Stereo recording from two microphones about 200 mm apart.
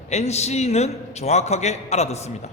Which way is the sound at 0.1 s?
35° left (ahead or behind).